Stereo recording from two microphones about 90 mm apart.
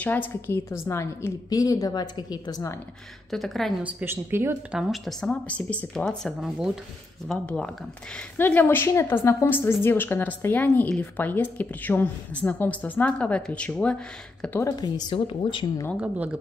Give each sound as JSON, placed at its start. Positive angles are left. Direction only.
{"t": 0.0, "sound": "a woman's voice", "side_deg": 20}
{"t": 3.3, "sound": "speech", "side_deg": 0}
{"t": 3.8, "sound": "a woman's voice", "side_deg": -25}
{"t": 4.6, "sound": "speech", "side_deg": -5}
{"t": 5.3, "sound": "a woman's voice", "side_deg": 15}
{"t": 8.4, "sound": "a woman's voice", "side_deg": 20}
{"t": 14.8, "sound": "speech", "side_deg": 50}
{"t": 15.1, "sound": "speech", "side_deg": 90}
{"t": 16.0, "sound": "a woman's voice", "side_deg": -15}